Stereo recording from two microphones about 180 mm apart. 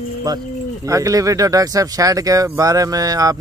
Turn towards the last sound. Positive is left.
turn(degrees=-20)  # may be behind; listen again after turning